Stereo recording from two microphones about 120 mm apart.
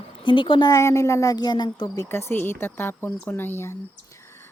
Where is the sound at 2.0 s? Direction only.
20° left (ahead or behind).